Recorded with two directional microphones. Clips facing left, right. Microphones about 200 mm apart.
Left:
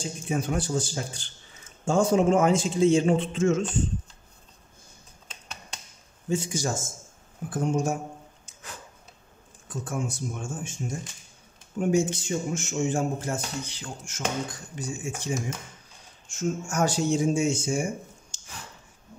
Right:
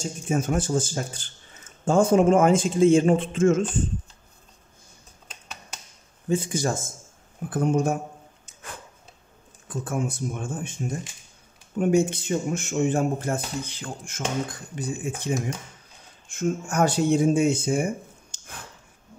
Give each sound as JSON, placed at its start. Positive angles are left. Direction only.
{"t": 0.0, "sound": "a man's voice", "side_deg": -45}
{"t": 6.2, "sound": "speech", "side_deg": -55}
{"t": 9.7, "sound": "speech", "side_deg": -55}
{"t": 11.8, "sound": "speech", "side_deg": -55}